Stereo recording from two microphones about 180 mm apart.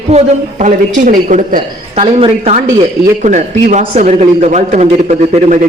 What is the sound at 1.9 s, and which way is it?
A man's voice, 35° right (ahead or behind).